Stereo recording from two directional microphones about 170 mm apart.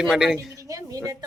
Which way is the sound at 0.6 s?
20° right (ahead or behind).